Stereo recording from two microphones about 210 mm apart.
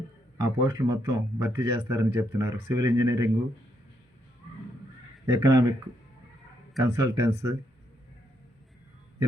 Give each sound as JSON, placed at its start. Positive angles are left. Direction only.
{"t": 0.3, "sound": "a man's voice", "side_deg": -15}
{"t": 5.3, "sound": "a man's voice", "side_deg": -20}
{"t": 6.7, "sound": "a man's voice", "side_deg": -15}